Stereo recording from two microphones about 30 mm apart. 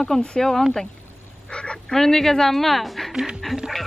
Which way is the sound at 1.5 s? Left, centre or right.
Left.